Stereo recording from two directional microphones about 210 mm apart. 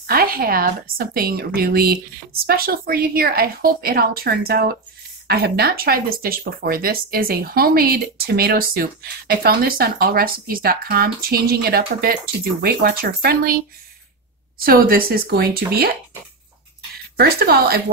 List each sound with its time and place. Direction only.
0.0 s speech: 45° right (ahead or behind)
14.6 s speech: 45° right (ahead or behind)
17.2 s speech: 45° right (ahead or behind)